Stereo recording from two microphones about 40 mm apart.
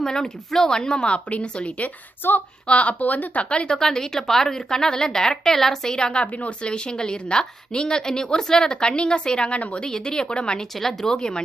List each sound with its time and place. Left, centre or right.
0.0 s a woman's voice: centre; by 1.9 s left
2.2 s speech: left
2.6 s a woman's voice: left
3.5 s a woman's voice: left
9.6 s a woman's voice: left
9.8 s a woman's voice: centre
10.8 s a woman's voice: centre